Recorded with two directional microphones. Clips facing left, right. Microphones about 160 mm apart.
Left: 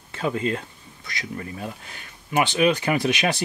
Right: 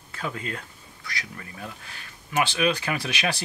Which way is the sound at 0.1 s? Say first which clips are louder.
Left 8 dB; 25° left (ahead or behind).